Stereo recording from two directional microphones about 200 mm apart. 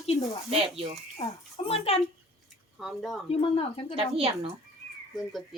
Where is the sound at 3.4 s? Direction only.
30° left (ahead or behind).